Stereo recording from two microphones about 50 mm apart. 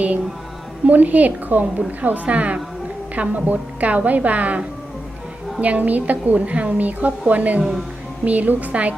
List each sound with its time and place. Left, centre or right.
0.9 s a woman's voice: right
7.6 s speech: centre
8.2 s a woman's voice: right